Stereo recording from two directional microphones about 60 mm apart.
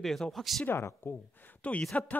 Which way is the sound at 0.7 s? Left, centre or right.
Left.